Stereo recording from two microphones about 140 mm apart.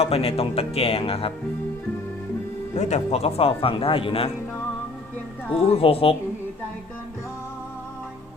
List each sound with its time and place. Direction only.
0.0 s speech: 45° left (ahead or behind)
2.7 s speech: 50° left (ahead or behind)
5.6 s speech: 45° left (ahead or behind)